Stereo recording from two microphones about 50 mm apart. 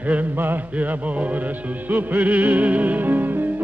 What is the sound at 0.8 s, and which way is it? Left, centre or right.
Music, right.